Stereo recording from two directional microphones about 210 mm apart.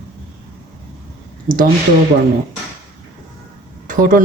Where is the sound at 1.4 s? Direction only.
40° right (ahead or behind).